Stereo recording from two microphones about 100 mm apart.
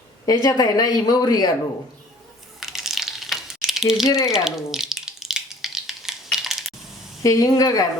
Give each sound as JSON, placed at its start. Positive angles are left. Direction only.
{"t": 0.3, "sound": "speech", "side_deg": 40}
{"t": 2.6, "sound": "a sound", "side_deg": -5}
{"t": 6.3, "sound": "computer keyboard", "side_deg": -5}
{"t": 7.2, "sound": "speech", "side_deg": 35}